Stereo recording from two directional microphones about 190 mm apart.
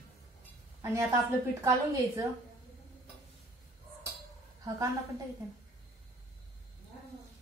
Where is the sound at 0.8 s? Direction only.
15° right (ahead or behind).